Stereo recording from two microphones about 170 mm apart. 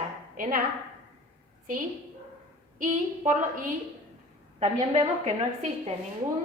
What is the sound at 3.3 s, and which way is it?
A woman's voice, 50° right (ahead or behind).